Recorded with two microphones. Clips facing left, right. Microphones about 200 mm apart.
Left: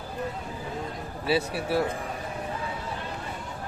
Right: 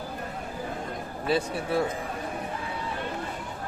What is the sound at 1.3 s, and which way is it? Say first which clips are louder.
Speech: left 1 dB; 5° left (ahead or behind).